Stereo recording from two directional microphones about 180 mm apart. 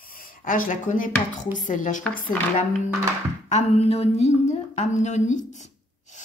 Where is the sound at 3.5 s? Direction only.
35° left (ahead or behind).